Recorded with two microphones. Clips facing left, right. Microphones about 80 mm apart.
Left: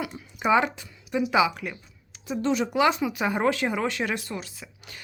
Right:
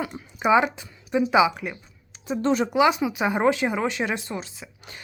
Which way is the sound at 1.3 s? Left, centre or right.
Right.